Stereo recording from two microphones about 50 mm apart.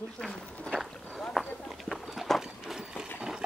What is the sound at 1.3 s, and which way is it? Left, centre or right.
Clip-clop, centre.